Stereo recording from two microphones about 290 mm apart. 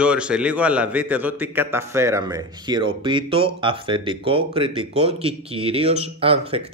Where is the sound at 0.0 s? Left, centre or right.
Centre.